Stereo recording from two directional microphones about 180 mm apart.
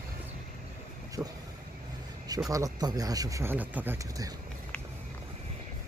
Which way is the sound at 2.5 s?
20° right (ahead or behind).